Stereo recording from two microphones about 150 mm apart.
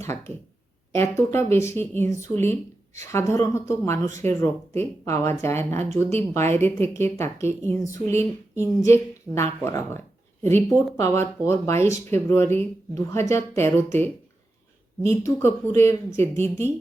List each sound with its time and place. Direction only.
0.0 s a woman's voice: 15° left (ahead or behind)
11.0 s a woman's voice: 15° left (ahead or behind)